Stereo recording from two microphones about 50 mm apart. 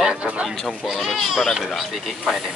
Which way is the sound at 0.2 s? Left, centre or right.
Right.